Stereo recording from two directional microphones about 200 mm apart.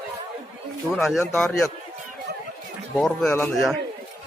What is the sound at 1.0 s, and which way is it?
Speech, centre (ahead or behind).